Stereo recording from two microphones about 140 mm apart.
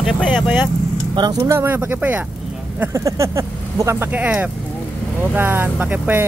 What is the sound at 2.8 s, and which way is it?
Speech, 20° right (ahead or behind).